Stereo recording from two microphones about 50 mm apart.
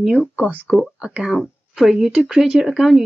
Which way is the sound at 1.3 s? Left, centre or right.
Centre.